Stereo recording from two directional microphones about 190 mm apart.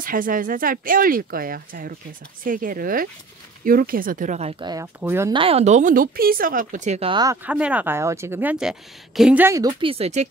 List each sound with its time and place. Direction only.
0.0 s speech: 45° right (ahead or behind)
4.6 s a woman's voice: 15° right (ahead or behind)
5.3 s speech: 30° right (ahead or behind)
7.4 s a woman's voice: 5° right (ahead or behind); by 10.2 s 30° right (ahead or behind)